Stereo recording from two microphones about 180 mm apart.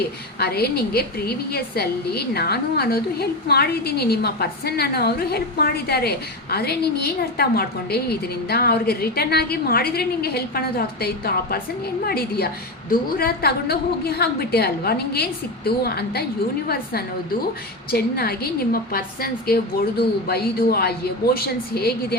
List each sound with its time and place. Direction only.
0.3 s a woman's voice: 60° left (ahead or behind)